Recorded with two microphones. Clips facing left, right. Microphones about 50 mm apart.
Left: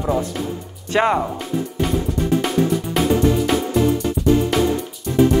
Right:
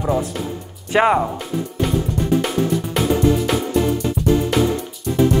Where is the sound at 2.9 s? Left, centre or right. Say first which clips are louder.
Even; centre.